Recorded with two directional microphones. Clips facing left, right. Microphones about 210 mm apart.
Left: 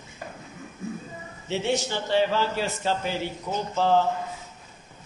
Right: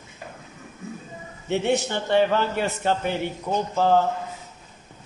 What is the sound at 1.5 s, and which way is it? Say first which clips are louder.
A man's voice: right 3 dB; 60° right (ahead or behind).